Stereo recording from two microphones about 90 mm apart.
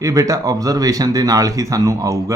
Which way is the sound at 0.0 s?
40° right (ahead or behind).